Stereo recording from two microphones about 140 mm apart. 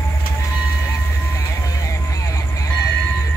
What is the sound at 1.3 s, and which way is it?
Vehicle, 20° left (ahead or behind).